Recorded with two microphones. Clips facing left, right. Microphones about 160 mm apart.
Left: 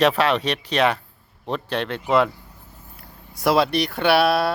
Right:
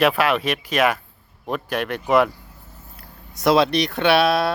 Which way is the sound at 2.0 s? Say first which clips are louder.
Right 2 dB; 15° right (ahead or behind).